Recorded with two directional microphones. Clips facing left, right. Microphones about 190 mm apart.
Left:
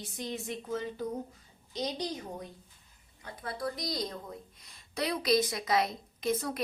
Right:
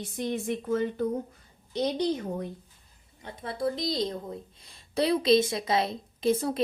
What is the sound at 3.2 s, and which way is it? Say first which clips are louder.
A woman's voice: right 6 dB; 25° right (ahead or behind).